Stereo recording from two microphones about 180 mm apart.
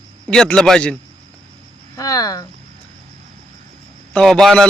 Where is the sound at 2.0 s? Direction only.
20° left (ahead or behind).